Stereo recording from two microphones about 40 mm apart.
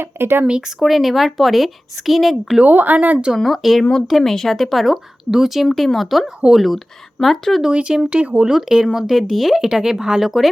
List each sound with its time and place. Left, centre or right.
0.0 s speech: right
0.8 s speech: centre
2.6 s speech: right
3.3 s speech: centre
7.7 s speech: right
8.4 s speech: centre